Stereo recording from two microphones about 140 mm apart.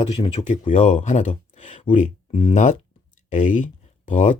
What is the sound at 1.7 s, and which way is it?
Speech, 40° left (ahead or behind).